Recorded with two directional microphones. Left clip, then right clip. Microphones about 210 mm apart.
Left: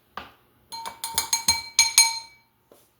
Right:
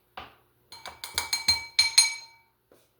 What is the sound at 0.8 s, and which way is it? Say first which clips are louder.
Music: left 4 dB; 15° left (ahead or behind).